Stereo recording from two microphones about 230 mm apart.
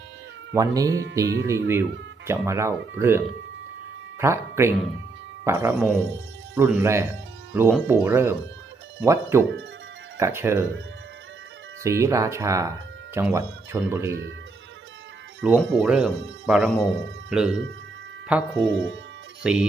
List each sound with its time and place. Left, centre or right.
0.5 s speech: centre
11.8 s speech: centre
14.1 s speech: right
15.4 s speech: centre
18.7 s speech: right
19.4 s speech: centre